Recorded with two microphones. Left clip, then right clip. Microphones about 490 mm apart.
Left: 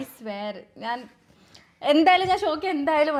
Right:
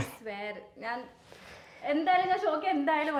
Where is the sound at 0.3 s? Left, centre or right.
Left.